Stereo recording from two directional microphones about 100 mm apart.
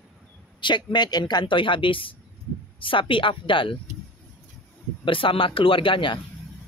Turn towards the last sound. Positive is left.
turn(degrees=55)  # may be behind; listen again after turning